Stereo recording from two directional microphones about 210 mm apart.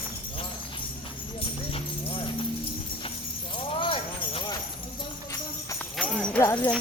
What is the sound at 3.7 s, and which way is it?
Jingle bell, 25° left (ahead or behind).